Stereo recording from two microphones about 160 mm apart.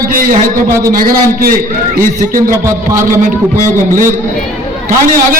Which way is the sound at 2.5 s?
20° right (ahead or behind).